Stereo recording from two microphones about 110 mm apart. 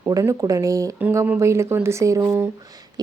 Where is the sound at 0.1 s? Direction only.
30° right (ahead or behind).